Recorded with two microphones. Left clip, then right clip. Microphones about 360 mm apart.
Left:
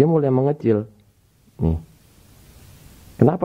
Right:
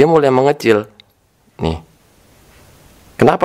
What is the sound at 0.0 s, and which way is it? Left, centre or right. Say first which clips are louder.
Speech: right 8 dB; centre.